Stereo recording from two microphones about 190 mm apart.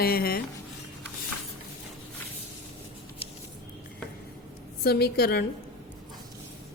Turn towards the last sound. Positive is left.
turn(degrees=55)  # may be behind; listen again after turning